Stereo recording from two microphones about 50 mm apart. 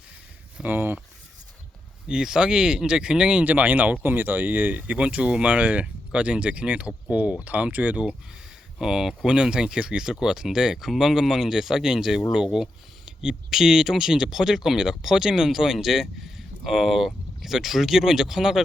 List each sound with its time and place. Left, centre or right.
0.6 s speech: right
2.0 s speech: centre
3.4 s speech: right
4.0 s speech: right
4.8 s speech: right
8.8 s speech: centre